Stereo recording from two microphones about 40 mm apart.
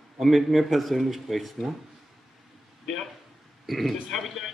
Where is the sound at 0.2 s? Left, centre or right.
Centre.